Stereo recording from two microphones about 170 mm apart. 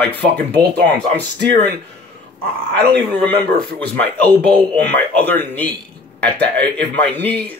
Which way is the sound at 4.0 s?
10° left (ahead or behind).